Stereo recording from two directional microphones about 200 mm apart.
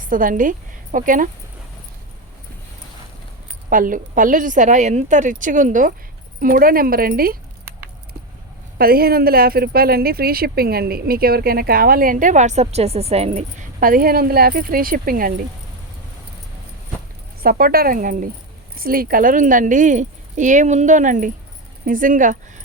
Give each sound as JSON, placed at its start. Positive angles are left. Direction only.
{"t": 0.0, "sound": "speech", "side_deg": -45}
{"t": 3.7, "sound": "speech", "side_deg": -40}
{"t": 8.8, "sound": "speech", "side_deg": -50}
{"t": 17.4, "sound": "speech", "side_deg": -45}